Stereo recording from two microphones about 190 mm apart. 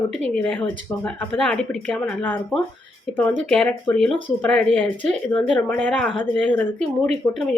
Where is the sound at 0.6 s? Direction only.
10° left (ahead or behind).